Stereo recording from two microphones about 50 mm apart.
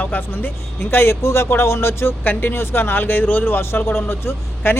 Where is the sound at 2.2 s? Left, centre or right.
Left.